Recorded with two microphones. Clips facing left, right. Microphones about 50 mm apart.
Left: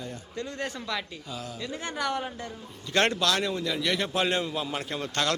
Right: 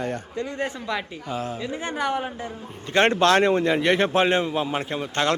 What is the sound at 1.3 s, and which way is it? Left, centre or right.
Speech, right.